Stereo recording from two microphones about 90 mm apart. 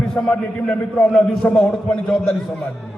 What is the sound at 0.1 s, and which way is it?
A man's voice, 15° left (ahead or behind).